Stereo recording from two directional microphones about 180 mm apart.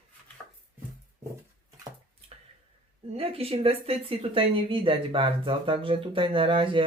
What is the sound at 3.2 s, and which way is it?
Speech, 35° right (ahead or behind).